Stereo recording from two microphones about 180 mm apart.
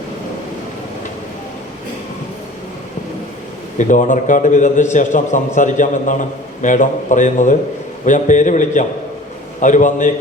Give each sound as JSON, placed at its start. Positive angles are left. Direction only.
{"t": 3.8, "sound": "a man's voice", "side_deg": 45}